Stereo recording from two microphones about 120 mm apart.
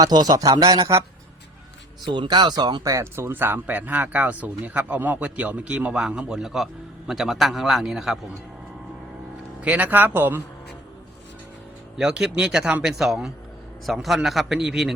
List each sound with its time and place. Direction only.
0.0 s a man's voice: 35° right (ahead or behind)
2.0 s a man's voice: 40° right (ahead or behind); by 8.2 s centre (ahead or behind)
9.6 s speech: 10° right (ahead or behind)
11.9 s a man's voice: 5° right (ahead or behind)